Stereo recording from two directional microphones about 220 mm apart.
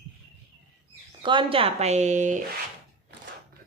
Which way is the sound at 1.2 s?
20° right (ahead or behind).